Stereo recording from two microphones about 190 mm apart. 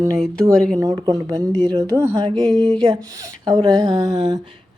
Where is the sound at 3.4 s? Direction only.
20° right (ahead or behind).